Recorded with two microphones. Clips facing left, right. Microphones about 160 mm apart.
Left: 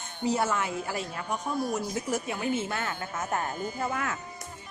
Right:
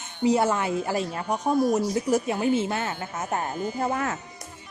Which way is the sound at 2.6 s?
20° right (ahead or behind).